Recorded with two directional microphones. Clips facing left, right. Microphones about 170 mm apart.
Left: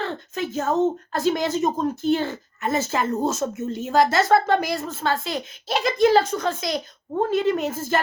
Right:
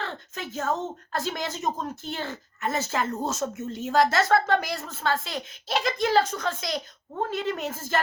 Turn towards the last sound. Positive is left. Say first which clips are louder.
# left 7 dB
turn(degrees=15)  # may be behind; listen again after turning